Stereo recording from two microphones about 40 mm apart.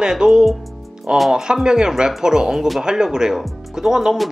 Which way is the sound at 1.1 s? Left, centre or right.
Centre.